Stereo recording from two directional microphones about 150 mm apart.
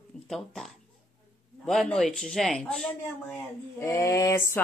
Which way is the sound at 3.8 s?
20° left (ahead or behind).